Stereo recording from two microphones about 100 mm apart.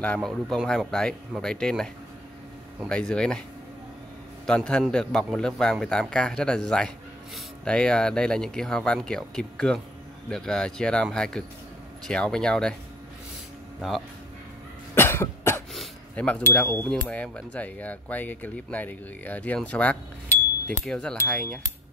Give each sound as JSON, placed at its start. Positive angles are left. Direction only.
{"t": 0.0, "sound": "speech", "side_deg": 15}
{"t": 2.9, "sound": "speech", "side_deg": 10}
{"t": 4.5, "sound": "speech", "side_deg": 5}
{"t": 13.7, "sound": "speech", "side_deg": 0}
{"t": 15.0, "sound": "cough", "side_deg": 25}
{"t": 16.2, "sound": "speech", "side_deg": 10}